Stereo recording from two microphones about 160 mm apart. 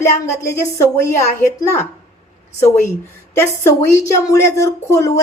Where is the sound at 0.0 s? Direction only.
15° left (ahead or behind).